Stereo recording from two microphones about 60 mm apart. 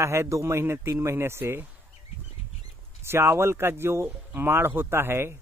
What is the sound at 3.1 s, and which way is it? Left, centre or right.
A man's voice, right.